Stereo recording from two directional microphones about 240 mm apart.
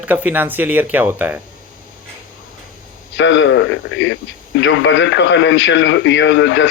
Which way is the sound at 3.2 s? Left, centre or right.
Left.